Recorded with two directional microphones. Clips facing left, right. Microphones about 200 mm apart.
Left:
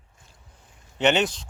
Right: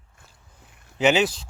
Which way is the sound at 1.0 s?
5° right (ahead or behind).